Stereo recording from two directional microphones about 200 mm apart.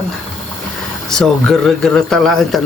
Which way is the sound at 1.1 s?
5° left (ahead or behind).